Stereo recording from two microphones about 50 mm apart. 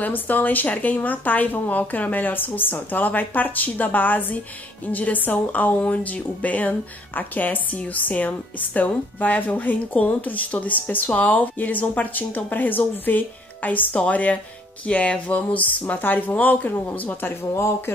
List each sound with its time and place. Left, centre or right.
0.0 s a woman's voice: left